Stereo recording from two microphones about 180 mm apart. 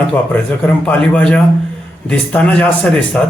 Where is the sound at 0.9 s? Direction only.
5° left (ahead or behind).